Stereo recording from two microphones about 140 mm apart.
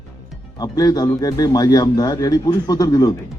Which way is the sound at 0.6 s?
25° left (ahead or behind).